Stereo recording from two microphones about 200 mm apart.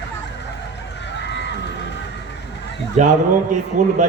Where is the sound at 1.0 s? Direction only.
60° left (ahead or behind).